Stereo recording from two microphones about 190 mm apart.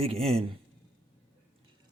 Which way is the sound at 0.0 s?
30° right (ahead or behind).